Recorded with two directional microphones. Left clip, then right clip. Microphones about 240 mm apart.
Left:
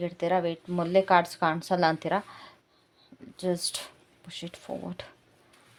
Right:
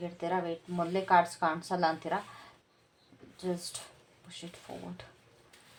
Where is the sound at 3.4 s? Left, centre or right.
Left.